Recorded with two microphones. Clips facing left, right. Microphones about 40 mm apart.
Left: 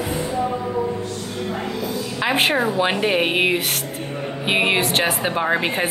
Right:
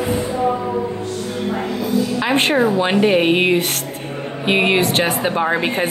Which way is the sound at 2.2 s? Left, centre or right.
Centre.